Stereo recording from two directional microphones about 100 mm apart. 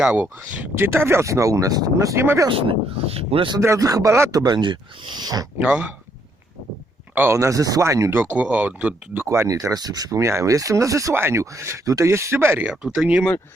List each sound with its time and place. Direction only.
0.0 s speech: 10° right (ahead or behind)
0.9 s speech: 25° right (ahead or behind)
2.6 s speech: 75° right (ahead or behind)
3.6 s speech: 30° right (ahead or behind)
5.6 s speech: 10° right (ahead or behind)
7.1 s speech: 20° right (ahead or behind)
7.3 s speech: 35° right (ahead or behind)
8.1 s speech: 15° right (ahead or behind)
9.2 s speech: 30° right (ahead or behind)
12.6 s speech: 5° right (ahead or behind)